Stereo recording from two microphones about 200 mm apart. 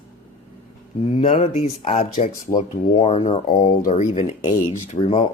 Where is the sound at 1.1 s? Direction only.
25° left (ahead or behind).